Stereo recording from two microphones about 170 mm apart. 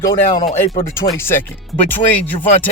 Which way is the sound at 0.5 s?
35° left (ahead or behind).